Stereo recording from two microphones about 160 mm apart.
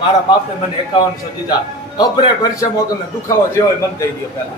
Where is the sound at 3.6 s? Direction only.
25° left (ahead or behind).